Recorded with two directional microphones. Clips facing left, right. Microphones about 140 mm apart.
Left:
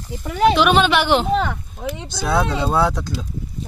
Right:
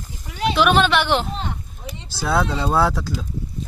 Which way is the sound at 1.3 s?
70° left (ahead or behind).